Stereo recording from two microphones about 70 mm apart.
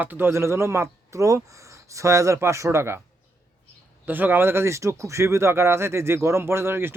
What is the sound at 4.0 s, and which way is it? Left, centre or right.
Speech, right.